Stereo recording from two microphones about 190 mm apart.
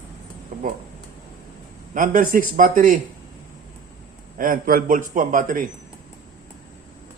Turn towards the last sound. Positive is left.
turn(degrees=-45)  # may be behind; listen again after turning